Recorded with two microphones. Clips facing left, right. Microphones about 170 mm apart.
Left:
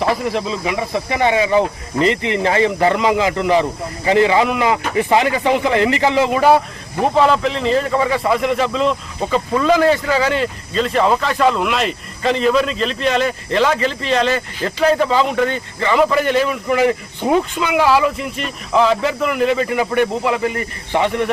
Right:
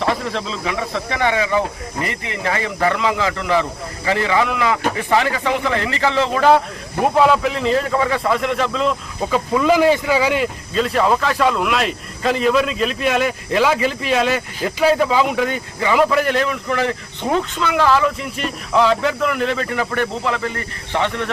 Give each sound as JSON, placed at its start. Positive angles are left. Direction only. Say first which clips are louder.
{"t": 0.3, "sound": "speech", "louder": "left 3 dB", "side_deg": 10}
{"t": 7.0, "sound": "a man's voice", "louder": "even", "side_deg": -5}